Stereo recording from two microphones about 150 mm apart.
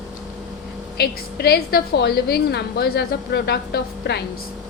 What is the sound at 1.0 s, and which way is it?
A woman's voice, 90° left.